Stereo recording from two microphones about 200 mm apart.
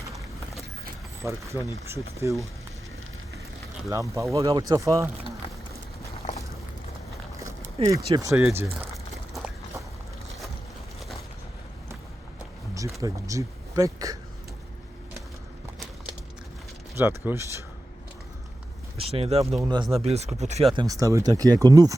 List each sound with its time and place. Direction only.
1.2 s speech: 15° right (ahead or behind)
3.8 s speech: 15° right (ahead or behind)
7.9 s speech: 15° right (ahead or behind)
13.0 s speech: 15° right (ahead or behind)
16.9 s speech: 10° right (ahead or behind)
18.9 s speech: 30° right (ahead or behind)
20.7 s speech: 15° right (ahead or behind)